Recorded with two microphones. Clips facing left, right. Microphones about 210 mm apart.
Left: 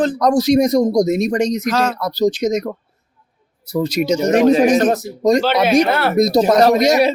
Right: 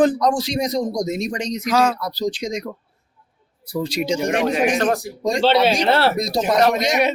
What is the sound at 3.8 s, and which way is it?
Speech, 40° left (ahead or behind).